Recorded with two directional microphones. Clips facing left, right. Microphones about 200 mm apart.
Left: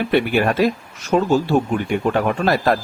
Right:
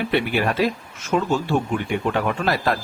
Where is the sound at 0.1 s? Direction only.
45° left (ahead or behind).